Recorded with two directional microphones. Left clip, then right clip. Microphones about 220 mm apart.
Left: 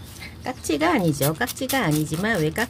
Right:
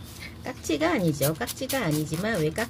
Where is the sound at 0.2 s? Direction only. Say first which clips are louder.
Left 5 dB; 15° left (ahead or behind).